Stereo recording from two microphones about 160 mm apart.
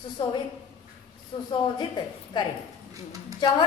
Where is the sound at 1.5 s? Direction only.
30° left (ahead or behind).